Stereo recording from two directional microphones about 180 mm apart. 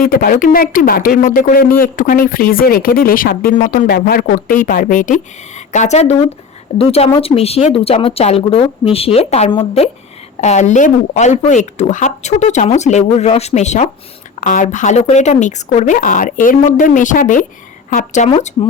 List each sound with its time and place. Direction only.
0.0 s speech: 50° left (ahead or behind)
18.3 s speech: 30° left (ahead or behind)